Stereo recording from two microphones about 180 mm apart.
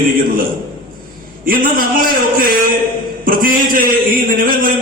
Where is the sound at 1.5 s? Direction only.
55° right (ahead or behind).